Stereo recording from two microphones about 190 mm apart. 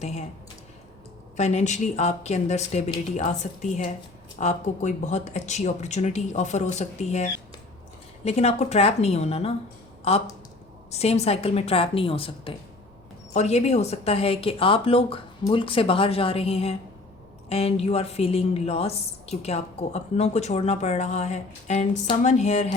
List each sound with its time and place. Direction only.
0.0 s a woman's voice: 35° left (ahead or behind)
1.4 s a woman's voice: 35° left (ahead or behind)